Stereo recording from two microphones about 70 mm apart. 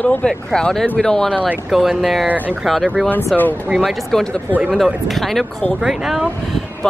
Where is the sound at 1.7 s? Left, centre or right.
Centre.